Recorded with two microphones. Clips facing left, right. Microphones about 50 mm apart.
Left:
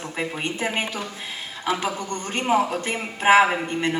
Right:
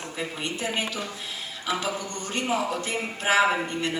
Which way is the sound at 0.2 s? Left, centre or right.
Left.